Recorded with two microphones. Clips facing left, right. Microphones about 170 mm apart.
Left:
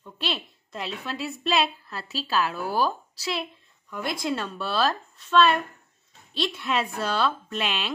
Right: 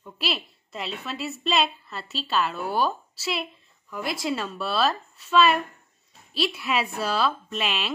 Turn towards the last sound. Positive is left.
turn(degrees=0)  # may be behind; listen again after turning